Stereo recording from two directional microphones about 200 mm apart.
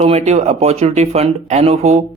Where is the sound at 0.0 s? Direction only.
35° right (ahead or behind).